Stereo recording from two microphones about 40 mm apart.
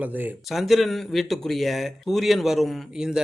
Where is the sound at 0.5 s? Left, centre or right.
Centre.